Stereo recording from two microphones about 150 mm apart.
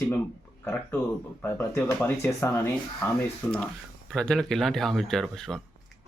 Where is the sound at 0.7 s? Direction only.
5° left (ahead or behind).